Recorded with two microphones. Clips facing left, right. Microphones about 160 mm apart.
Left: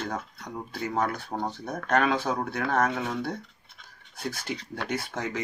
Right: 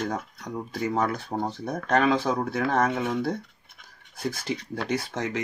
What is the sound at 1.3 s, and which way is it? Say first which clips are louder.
Speech: right 3 dB; 35° right (ahead or behind).